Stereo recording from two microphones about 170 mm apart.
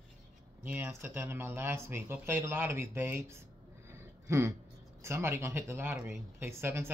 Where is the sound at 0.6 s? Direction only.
10° right (ahead or behind).